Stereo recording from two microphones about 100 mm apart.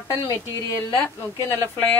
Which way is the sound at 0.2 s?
30° left (ahead or behind).